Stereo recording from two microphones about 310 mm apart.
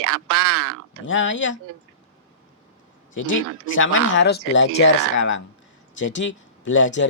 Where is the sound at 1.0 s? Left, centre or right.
Left.